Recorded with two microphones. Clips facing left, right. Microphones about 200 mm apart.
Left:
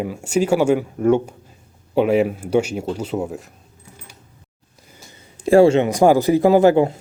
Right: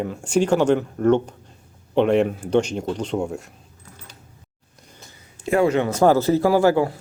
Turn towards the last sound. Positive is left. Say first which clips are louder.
# left 4 dB
turn(degrees=20)  # may be behind; listen again after turning